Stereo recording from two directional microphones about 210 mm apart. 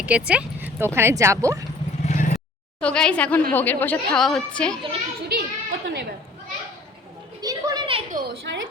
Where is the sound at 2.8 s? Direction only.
5° left (ahead or behind).